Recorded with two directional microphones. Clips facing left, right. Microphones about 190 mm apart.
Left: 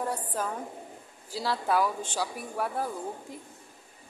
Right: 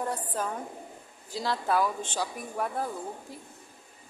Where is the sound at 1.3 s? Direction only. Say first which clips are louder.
Even; 10° left (ahead or behind).